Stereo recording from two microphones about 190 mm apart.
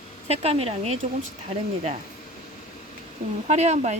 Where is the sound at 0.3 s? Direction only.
35° right (ahead or behind).